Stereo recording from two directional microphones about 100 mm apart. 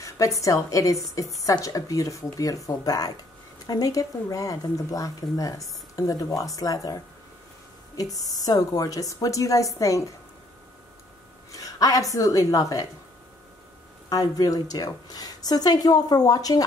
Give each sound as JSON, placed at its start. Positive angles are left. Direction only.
{"t": 0.0, "sound": "speech", "side_deg": 35}
{"t": 11.5, "sound": "speech", "side_deg": 35}
{"t": 14.0, "sound": "speech", "side_deg": 40}